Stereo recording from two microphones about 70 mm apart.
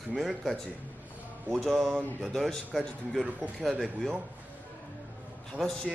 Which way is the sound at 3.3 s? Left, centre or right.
Right.